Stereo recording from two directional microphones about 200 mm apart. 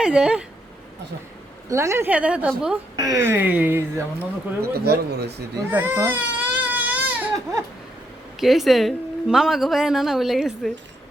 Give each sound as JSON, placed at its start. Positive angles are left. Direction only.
{"t": 0.0, "sound": "a woman's voice", "side_deg": -5}
{"t": 1.7, "sound": "speech", "side_deg": -15}
{"t": 4.6, "sound": "speech", "side_deg": -55}
{"t": 5.7, "sound": "baby cry", "side_deg": -10}
{"t": 8.4, "sound": "a woman's voice", "side_deg": 0}